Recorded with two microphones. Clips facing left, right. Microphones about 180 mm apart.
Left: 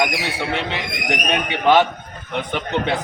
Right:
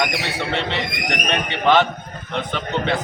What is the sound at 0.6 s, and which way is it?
A man's voice, 5° left (ahead or behind).